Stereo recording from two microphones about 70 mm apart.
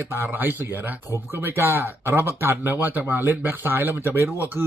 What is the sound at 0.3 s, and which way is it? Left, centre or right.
Speech, right.